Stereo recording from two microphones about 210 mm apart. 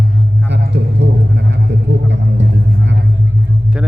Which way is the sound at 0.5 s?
55° right (ahead or behind).